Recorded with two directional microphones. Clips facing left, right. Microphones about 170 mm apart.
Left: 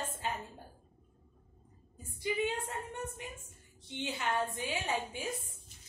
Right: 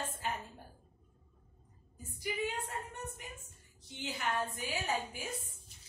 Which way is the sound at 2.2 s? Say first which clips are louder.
Left 4 dB; 25° left (ahead or behind).